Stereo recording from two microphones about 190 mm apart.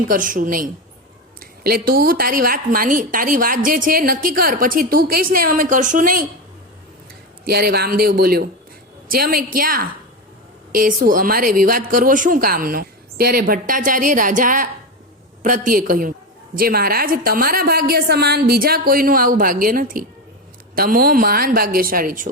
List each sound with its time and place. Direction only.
0.0 s a woman's voice: 45° right (ahead or behind)
7.4 s a woman's voice: 55° right (ahead or behind)